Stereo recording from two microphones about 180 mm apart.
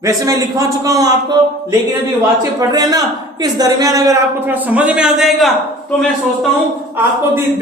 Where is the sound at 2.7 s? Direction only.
20° right (ahead or behind); by 5.5 s centre (ahead or behind).